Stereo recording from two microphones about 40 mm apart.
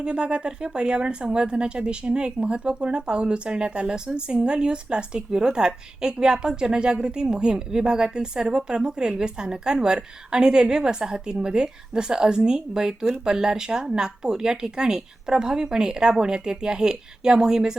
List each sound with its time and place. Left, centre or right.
0.0 s a woman's voice: right